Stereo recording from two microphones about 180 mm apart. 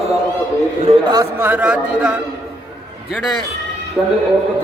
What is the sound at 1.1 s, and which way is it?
Speech, 15° right (ahead or behind).